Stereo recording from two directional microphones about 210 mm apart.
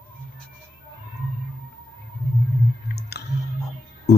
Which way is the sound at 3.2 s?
50° left (ahead or behind).